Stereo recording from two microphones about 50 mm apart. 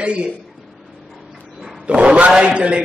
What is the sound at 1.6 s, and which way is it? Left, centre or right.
A man's voice, centre.